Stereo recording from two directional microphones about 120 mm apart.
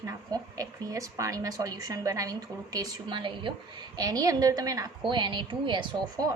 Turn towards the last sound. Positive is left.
turn(degrees=-40)  # may be behind; listen again after turning